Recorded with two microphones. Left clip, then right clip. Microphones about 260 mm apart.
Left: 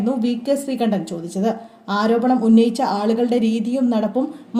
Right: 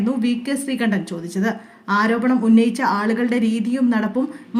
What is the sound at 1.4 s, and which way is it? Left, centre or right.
A woman's voice, centre.